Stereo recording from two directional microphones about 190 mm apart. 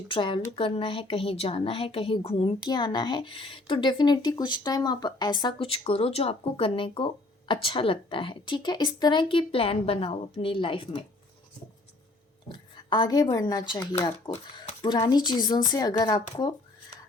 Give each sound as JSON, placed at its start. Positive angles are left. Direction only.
{"t": 0.1, "sound": "a woman's voice", "side_deg": 25}
{"t": 12.5, "sound": "a sound", "side_deg": 25}
{"t": 13.5, "sound": "a woman's voice", "side_deg": 20}